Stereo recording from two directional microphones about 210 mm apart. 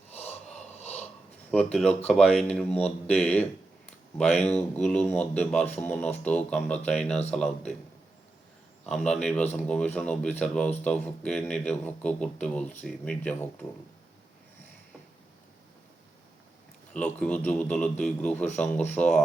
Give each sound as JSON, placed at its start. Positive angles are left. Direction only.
{"t": 0.1, "sound": "snort", "side_deg": 30}
{"t": 1.5, "sound": "speech", "side_deg": 5}
{"t": 4.5, "sound": "speech", "side_deg": 5}
{"t": 8.9, "sound": "speech", "side_deg": 5}
{"t": 16.9, "sound": "a man's voice", "side_deg": 5}